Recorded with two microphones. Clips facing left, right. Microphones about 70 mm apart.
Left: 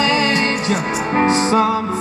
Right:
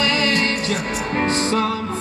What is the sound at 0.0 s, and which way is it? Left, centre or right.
Music, left.